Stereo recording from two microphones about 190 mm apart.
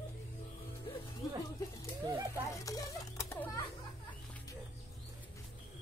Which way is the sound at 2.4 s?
15° left (ahead or behind).